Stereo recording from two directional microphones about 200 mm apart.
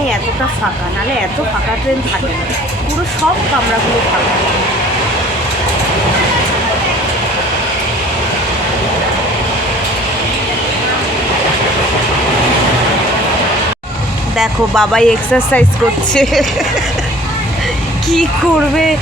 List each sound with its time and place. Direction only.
14.3 s speech: 5° left (ahead or behind)